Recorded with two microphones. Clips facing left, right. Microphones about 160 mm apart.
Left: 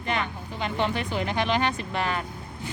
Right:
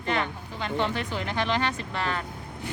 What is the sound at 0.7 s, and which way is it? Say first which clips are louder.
Speech: left 1 dB; 15° left (ahead or behind).